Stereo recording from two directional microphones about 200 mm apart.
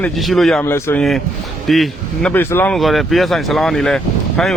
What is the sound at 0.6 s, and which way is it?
Speech, 10° left (ahead or behind).